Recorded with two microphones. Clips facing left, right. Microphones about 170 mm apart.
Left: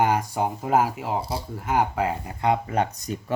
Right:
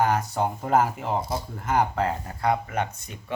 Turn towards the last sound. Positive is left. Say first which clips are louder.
# left 4 dB
turn(degrees=40)  # may be behind; listen again after turning